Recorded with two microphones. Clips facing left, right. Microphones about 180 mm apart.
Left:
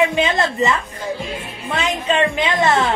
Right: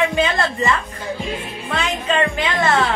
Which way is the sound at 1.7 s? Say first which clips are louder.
Left 1 dB; 25° left (ahead or behind).